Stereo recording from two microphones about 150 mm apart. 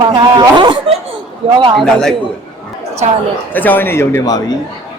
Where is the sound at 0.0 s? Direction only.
30° right (ahead or behind).